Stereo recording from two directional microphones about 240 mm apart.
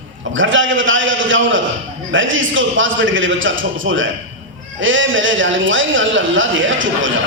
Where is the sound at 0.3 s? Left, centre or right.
Right.